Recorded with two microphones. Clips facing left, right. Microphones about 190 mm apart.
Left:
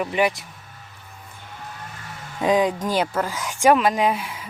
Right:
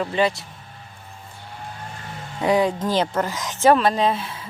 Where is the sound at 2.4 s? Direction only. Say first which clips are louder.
Even; 20° left (ahead or behind).